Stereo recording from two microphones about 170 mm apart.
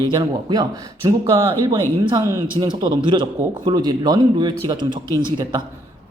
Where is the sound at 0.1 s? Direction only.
25° right (ahead or behind).